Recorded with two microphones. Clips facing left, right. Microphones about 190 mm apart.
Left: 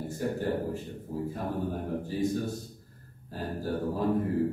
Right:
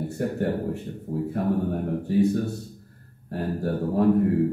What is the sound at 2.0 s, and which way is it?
A man's voice, 65° right (ahead or behind).